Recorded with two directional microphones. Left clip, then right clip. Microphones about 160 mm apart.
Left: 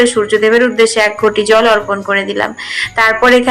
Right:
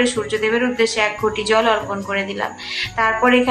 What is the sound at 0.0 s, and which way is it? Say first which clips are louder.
Speech: left 9 dB; 30° left (ahead or behind).